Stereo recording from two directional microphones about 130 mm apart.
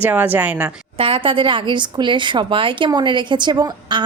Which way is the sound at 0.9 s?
45° right (ahead or behind).